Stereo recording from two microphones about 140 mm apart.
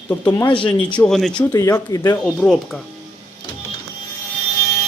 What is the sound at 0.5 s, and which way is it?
Speech, 35° left (ahead or behind).